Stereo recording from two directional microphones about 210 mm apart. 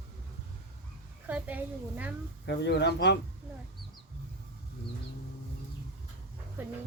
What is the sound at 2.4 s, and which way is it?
Speech, 55° left (ahead or behind).